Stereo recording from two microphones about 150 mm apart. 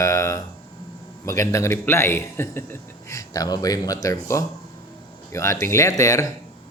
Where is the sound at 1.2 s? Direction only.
20° left (ahead or behind).